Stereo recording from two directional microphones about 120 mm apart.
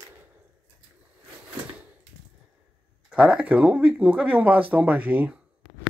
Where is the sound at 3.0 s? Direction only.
10° right (ahead or behind).